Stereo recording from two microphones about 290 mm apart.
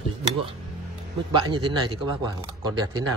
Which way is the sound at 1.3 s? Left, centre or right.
Centre.